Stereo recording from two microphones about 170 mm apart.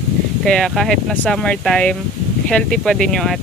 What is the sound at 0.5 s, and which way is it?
Speech, centre (ahead or behind).